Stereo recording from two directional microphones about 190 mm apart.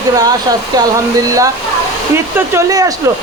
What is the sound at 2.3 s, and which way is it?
Speech, 15° right (ahead or behind).